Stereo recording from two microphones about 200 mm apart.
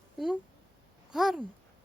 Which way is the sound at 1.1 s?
Centre (ahead or behind).